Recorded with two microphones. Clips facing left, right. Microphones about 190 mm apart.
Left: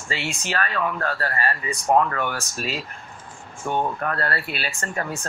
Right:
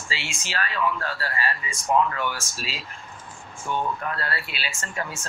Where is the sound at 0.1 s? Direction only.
55° left (ahead or behind).